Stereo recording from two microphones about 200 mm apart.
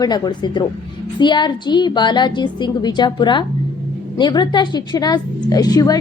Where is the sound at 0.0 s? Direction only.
20° left (ahead or behind).